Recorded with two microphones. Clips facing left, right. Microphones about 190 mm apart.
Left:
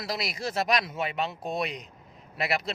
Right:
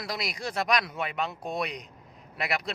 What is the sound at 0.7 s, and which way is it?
Speech, 25° left (ahead or behind).